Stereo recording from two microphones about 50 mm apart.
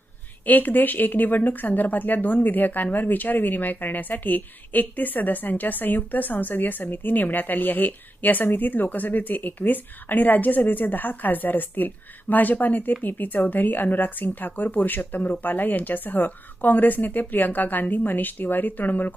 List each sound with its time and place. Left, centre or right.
0.4 s speech: left